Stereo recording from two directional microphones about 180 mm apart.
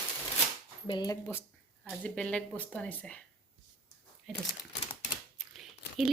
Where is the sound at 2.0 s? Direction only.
5° left (ahead or behind).